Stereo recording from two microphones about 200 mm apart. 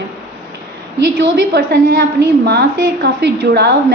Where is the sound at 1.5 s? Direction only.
55° right (ahead or behind).